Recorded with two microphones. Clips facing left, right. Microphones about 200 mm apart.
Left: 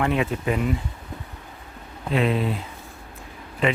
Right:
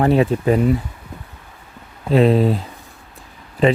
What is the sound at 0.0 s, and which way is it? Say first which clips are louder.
Speech: right 8 dB; 35° right (ahead or behind).